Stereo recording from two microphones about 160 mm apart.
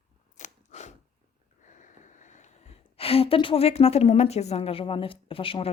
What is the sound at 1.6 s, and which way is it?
Speech, 50° left (ahead or behind).